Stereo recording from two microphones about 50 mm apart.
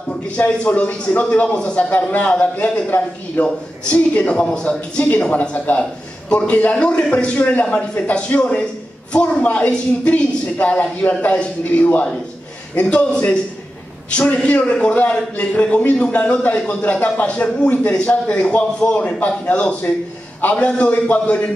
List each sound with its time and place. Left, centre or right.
0.5 s a man's voice: left
2.3 s a man's voice: centre
3.8 s a man's voice: left